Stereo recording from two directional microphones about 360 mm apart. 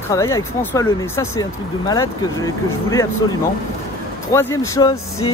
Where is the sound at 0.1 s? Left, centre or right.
Centre.